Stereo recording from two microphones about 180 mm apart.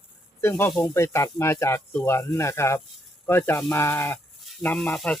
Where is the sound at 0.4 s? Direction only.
10° left (ahead or behind).